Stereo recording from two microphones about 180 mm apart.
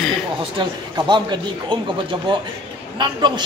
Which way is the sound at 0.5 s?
25° right (ahead or behind).